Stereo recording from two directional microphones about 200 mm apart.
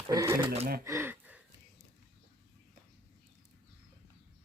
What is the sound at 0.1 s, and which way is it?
Speech, 15° right (ahead or behind).